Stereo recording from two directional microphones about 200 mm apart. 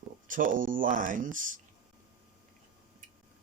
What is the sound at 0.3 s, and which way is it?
Speech, 45° right (ahead or behind).